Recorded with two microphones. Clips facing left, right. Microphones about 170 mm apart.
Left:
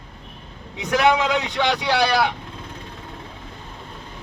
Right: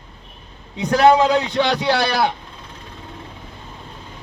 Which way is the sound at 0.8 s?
35° right (ahead or behind).